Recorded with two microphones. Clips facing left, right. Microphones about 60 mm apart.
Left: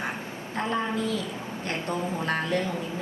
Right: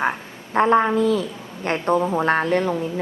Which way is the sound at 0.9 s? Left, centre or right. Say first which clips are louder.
Right 9 dB; right.